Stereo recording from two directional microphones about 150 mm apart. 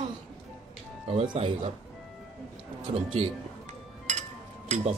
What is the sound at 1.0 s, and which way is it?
Speech, 40° right (ahead or behind).